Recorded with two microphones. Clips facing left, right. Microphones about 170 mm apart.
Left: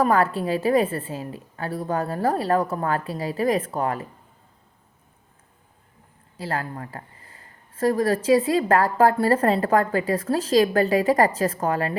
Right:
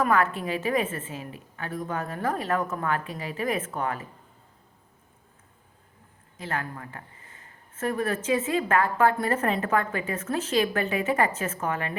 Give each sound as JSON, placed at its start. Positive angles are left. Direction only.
{"t": 0.0, "sound": "speech", "side_deg": 35}
{"t": 6.3, "sound": "speech", "side_deg": 35}